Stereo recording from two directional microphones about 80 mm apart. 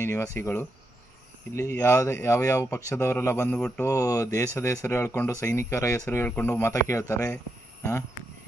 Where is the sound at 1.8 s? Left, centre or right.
Left.